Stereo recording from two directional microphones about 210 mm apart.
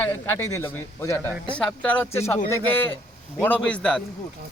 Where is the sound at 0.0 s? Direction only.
10° left (ahead or behind).